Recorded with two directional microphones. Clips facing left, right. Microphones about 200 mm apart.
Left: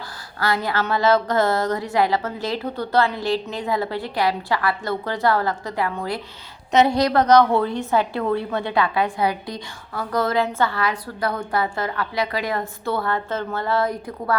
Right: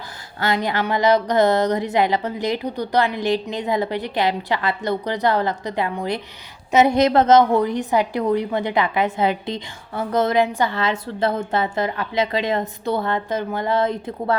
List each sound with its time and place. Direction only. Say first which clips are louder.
0.3 s a woman's voice: right 1 dB; 20° right (ahead or behind)